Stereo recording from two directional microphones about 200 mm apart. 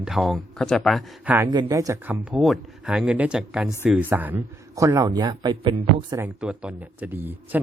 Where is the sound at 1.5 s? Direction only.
15° right (ahead or behind).